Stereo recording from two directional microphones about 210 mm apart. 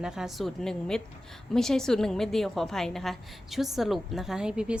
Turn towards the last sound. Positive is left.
turn(degrees=-5)  # may be behind; listen again after turning